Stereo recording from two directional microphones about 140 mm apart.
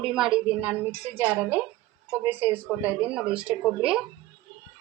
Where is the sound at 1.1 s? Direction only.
15° right (ahead or behind).